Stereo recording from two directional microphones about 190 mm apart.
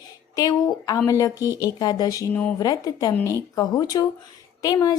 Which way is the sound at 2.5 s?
20° left (ahead or behind).